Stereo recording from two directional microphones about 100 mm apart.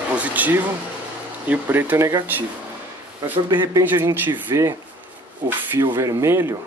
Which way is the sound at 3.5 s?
45° right (ahead or behind).